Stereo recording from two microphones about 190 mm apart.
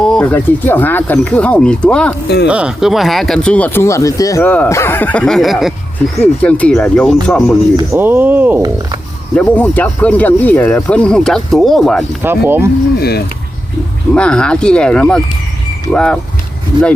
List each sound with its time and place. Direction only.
0.0 s speech: 5° left (ahead or behind)
2.5 s speech: 5° right (ahead or behind)
7.8 s speech: 15° right (ahead or behind)
9.3 s speech: 5° left (ahead or behind)
12.2 s speech: 10° right (ahead or behind)
13.0 s speech: 55° left (ahead or behind)
14.1 s speech: 5° left (ahead or behind)